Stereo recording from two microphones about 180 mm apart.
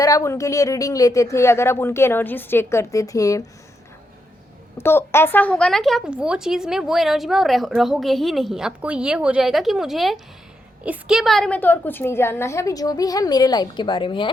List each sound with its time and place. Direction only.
0.0 s speech: 20° left (ahead or behind)
4.8 s speech: 15° left (ahead or behind)